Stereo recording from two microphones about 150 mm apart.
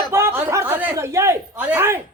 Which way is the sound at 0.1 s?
15° right (ahead or behind).